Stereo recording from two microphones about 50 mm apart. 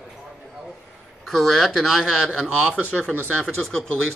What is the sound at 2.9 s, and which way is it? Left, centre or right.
Speech, centre.